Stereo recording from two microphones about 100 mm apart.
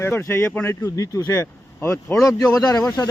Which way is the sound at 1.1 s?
35° left (ahead or behind).